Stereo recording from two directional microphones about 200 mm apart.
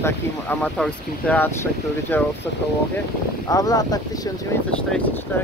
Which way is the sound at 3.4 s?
15° left (ahead or behind).